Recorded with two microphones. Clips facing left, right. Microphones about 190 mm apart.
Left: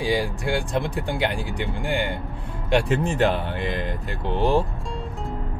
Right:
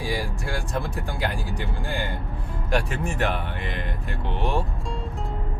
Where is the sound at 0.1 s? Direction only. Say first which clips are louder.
Left 7 dB; 15° left (ahead or behind).